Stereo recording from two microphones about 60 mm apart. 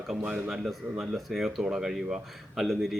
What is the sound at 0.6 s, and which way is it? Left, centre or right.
A man's voice, centre.